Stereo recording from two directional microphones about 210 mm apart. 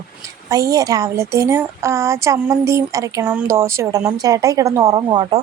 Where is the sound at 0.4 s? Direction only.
15° right (ahead or behind).